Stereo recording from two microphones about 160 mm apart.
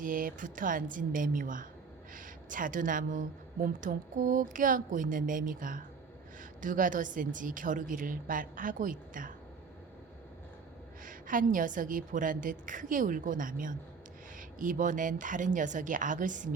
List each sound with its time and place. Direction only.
0.0 s a woman's voice: 60° right (ahead or behind)
11.0 s a woman's voice: 55° right (ahead or behind)